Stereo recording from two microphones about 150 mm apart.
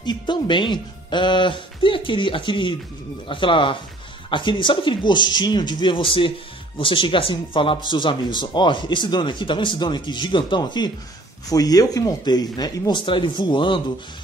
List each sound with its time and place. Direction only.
0.0 s speech: 30° left (ahead or behind)